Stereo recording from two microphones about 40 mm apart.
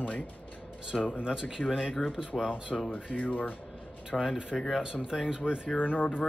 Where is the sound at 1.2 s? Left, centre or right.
Centre.